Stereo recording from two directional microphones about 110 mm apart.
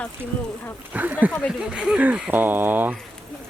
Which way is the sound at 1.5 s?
5° right (ahead or behind).